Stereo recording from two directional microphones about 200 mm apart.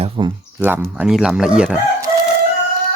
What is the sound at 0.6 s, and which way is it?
Speech, 10° right (ahead or behind).